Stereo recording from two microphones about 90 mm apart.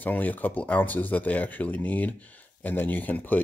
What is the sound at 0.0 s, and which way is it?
Speech, 20° left (ahead or behind).